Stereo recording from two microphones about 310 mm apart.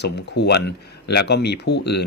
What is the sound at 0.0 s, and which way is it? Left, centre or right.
Speech, left.